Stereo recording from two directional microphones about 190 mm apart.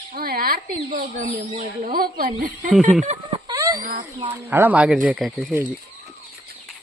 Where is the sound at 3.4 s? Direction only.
15° right (ahead or behind).